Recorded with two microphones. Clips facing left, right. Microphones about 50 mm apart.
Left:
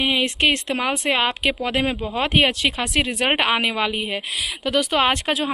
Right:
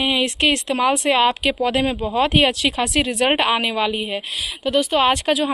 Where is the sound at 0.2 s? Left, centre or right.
Left.